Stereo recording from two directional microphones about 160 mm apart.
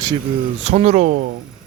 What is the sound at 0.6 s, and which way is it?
Speech, 45° right (ahead or behind).